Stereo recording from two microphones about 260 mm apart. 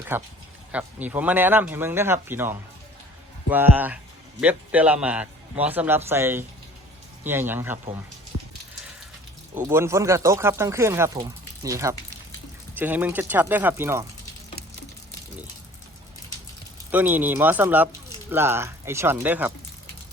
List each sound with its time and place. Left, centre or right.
0.1 s a man's voice: centre
8.3 s a sound: right
9.6 s speech: centre
16.9 s speech: centre